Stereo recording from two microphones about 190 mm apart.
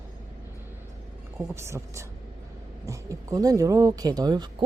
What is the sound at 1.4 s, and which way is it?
Speech, 15° right (ahead or behind).